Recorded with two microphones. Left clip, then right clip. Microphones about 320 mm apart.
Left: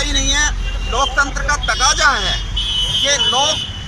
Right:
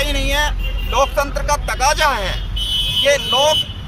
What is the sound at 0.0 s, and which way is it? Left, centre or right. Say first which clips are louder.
Vehicle: left 2 dB; centre.